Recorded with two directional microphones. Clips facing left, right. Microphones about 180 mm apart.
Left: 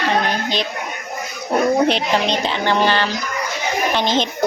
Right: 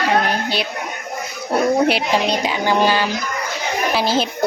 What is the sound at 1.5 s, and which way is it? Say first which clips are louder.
A woman's voice: even; 5° right (ahead or behind).